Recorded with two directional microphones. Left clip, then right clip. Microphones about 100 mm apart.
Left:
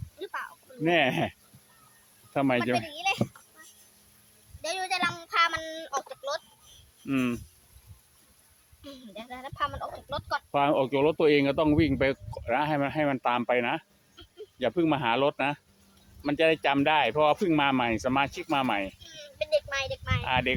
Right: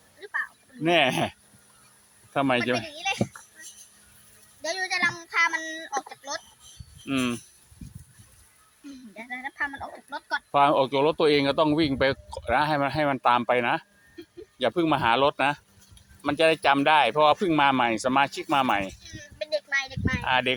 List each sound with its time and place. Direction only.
0.8 s speech: 10° left (ahead or behind)
2.3 s speech: 30° left (ahead or behind)
4.6 s a sound: 65° left (ahead or behind)
7.1 s speech: 25° left (ahead or behind)
9.3 s speech: 65° left (ahead or behind)
10.5 s speech: 25° left (ahead or behind)
19.1 s a sound: 85° left
20.2 s speech: 15° left (ahead or behind)